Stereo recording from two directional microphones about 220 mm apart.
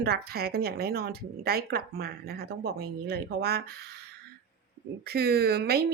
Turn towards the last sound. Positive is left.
turn(degrees=-45)  # may be behind; listen again after turning